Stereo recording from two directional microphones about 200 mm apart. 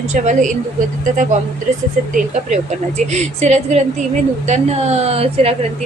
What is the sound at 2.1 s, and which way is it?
A woman's voice, 35° right (ahead or behind).